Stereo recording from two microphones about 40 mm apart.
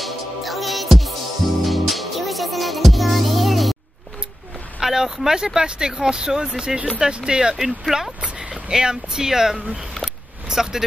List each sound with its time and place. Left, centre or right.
0.0 s music: centre
4.7 s speech: centre
7.5 s speech: centre
8.2 s speech: right